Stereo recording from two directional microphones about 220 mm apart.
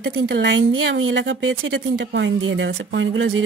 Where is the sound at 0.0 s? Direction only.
50° right (ahead or behind).